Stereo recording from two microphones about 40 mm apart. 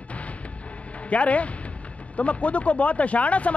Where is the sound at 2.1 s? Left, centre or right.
Left.